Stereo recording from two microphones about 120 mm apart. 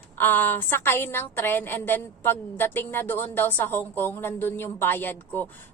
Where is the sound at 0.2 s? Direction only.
15° left (ahead or behind).